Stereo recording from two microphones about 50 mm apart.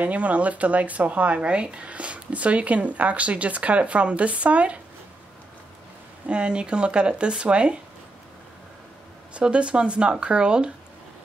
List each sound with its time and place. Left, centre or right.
0.0 s speech: right
6.2 s speech: right
9.3 s speech: right